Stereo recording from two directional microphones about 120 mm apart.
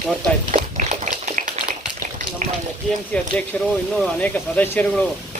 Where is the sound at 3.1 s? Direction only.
10° left (ahead or behind).